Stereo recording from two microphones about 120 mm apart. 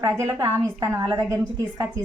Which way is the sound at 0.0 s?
20° right (ahead or behind).